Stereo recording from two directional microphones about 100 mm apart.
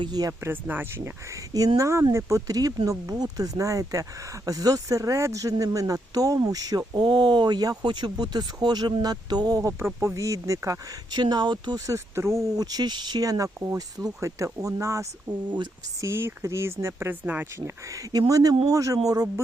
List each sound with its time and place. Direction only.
0.0 s speech: 40° right (ahead or behind)
0.4 s speech: 20° right (ahead or behind)
1.5 s speech: 35° right (ahead or behind)
11.2 s speech: 45° right (ahead or behind)
11.9 s speech: 25° right (ahead or behind)
17.8 s speech: 35° right (ahead or behind)